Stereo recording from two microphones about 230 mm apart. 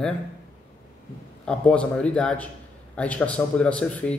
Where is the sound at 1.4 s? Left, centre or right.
Centre.